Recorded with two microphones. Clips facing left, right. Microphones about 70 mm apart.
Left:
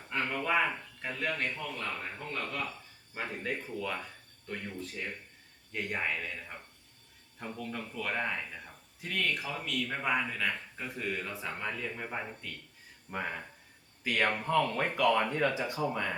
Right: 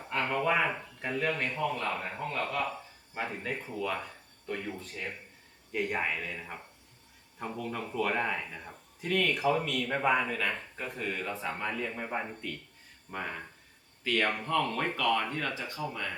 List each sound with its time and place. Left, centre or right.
0.1 s a sound: centre
0.9 s a man's voice: centre
5.7 s a man's voice: centre
13.1 s speech: centre